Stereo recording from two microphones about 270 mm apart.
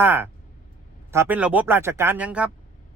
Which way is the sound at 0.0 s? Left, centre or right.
Centre.